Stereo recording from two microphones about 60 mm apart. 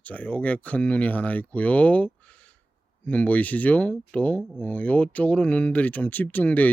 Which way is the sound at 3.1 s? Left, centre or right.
Left.